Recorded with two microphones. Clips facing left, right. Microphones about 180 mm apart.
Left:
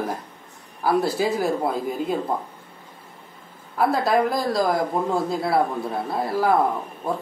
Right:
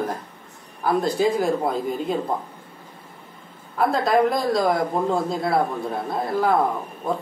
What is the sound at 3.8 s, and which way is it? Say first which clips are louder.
Speech: right 1 dB; 5° left (ahead or behind).